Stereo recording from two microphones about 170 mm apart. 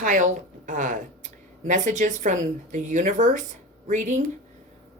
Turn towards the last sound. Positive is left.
turn(degrees=-45)  # may be behind; listen again after turning